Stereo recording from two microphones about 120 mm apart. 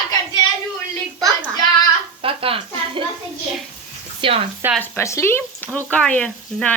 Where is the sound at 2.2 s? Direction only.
50° right (ahead or behind).